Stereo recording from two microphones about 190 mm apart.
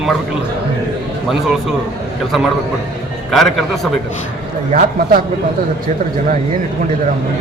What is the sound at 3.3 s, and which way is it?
Speech, centre (ahead or behind).